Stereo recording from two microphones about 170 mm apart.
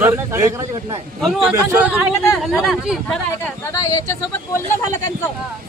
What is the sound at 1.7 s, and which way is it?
A man's voice, 10° right (ahead or behind).